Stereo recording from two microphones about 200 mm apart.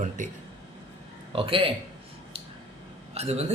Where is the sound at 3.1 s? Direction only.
30° right (ahead or behind).